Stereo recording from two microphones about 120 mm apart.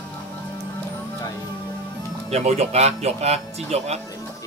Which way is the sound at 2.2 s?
65° right (ahead or behind).